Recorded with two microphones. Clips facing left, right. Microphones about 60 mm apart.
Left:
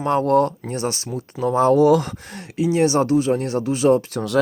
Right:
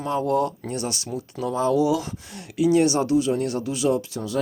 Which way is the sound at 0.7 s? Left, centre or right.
Left.